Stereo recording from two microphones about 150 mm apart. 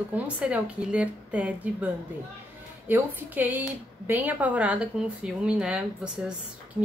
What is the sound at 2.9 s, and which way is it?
A woman's voice, 10° right (ahead or behind).